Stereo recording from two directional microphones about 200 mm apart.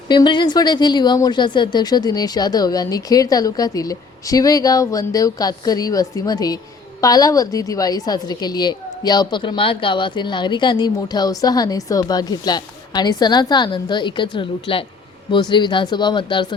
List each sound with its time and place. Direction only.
0.1 s a woman's voice: 20° left (ahead or behind)